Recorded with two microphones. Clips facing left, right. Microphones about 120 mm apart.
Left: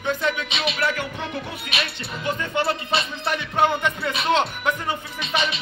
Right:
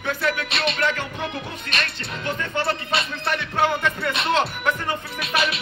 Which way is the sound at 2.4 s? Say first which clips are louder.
Left 1 dB; 20° left (ahead or behind).